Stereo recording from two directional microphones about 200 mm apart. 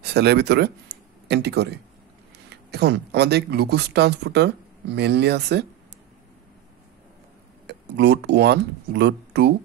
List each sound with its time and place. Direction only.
0.0 s speech: 55° right (ahead or behind)
7.6 s speech: 55° right (ahead or behind)